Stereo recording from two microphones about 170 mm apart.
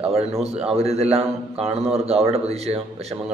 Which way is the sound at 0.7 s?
40° right (ahead or behind).